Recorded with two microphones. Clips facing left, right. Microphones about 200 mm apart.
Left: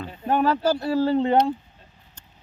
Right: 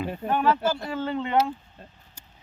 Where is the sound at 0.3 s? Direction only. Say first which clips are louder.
Left 3 dB; 40° left (ahead or behind).